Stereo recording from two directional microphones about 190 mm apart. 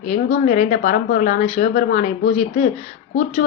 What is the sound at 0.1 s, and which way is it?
A woman's voice, 40° left (ahead or behind).